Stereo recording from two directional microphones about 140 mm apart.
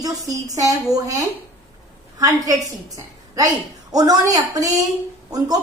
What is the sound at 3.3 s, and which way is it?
A woman's voice, 25° right (ahead or behind).